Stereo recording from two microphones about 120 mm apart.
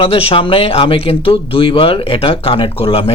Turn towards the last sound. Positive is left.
turn(degrees=50)  # may be behind; listen again after turning